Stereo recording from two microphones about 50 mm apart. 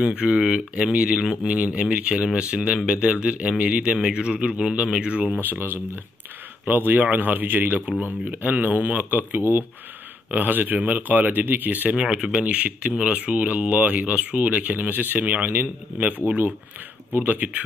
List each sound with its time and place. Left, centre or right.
0.1 s a man's voice: right
5.4 s speech: right
9.4 s speech: right
10.3 s speech: right
12.0 s speech: centre; by 17.6 s right